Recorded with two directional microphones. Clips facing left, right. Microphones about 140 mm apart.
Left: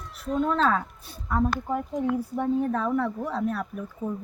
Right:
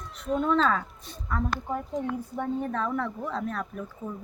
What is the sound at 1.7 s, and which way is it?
A woman's voice, 10° left (ahead or behind).